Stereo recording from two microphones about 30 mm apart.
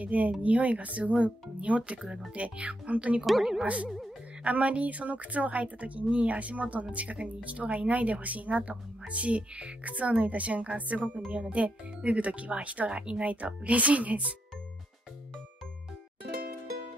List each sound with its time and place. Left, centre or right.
0.0 s speech: right
11.3 s speech: right
13.0 s speech: right
13.3 s speech: right